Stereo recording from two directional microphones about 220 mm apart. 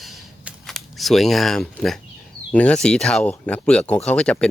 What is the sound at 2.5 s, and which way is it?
Speech, 5° left (ahead or behind).